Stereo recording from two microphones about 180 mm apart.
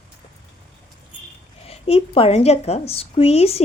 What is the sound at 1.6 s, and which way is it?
A woman's voice, 35° left (ahead or behind).